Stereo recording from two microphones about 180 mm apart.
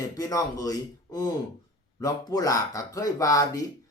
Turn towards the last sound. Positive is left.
turn(degrees=20)  # may be behind; listen again after turning